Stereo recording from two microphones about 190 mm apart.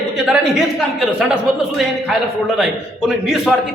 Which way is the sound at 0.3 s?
5° right (ahead or behind).